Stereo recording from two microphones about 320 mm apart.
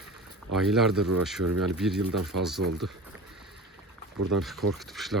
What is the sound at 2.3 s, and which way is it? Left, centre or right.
Speech, right.